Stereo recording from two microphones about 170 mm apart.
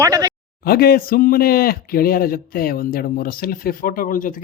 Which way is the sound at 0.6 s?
65° left (ahead or behind).